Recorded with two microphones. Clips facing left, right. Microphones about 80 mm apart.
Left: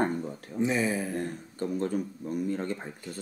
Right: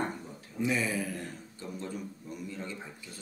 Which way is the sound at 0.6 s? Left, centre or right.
Left.